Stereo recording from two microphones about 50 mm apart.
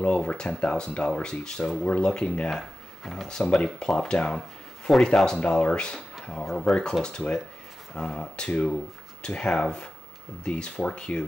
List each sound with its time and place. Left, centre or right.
0.0 s speech: left